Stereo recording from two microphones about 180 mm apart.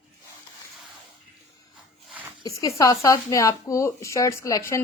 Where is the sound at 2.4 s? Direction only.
15° left (ahead or behind).